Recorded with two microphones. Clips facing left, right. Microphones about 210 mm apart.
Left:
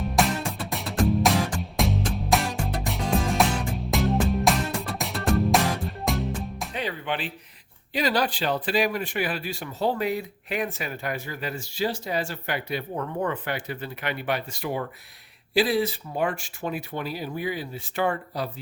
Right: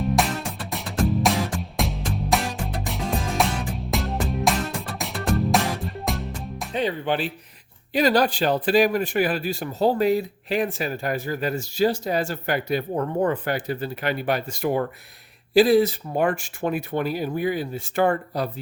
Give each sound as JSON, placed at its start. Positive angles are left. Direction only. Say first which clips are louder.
{"t": 0.0, "sound": "music", "louder": "right 1 dB", "side_deg": 0}
{"t": 6.7, "sound": "music", "louder": "right 7 dB", "side_deg": -35}
{"t": 7.9, "sound": "speech", "louder": "right 5 dB", "side_deg": -45}